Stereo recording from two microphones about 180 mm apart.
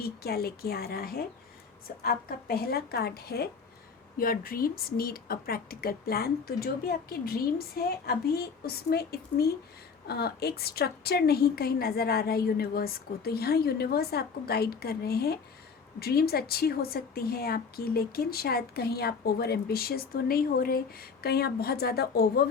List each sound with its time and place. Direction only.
0.0 s a woman's voice: 60° left (ahead or behind)